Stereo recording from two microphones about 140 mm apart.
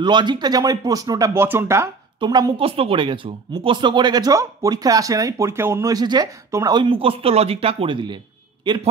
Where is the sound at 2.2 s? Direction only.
30° right (ahead or behind).